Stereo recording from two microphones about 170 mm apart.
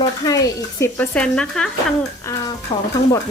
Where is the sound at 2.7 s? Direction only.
25° left (ahead or behind).